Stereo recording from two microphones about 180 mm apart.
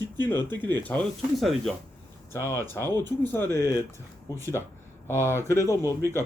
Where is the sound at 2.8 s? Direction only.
20° right (ahead or behind).